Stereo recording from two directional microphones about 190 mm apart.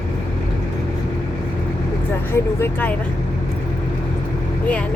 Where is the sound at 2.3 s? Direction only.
10° left (ahead or behind).